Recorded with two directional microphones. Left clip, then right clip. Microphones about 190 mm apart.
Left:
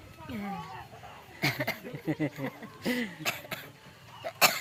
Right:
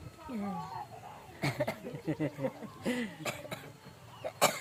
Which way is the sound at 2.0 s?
40° left (ahead or behind).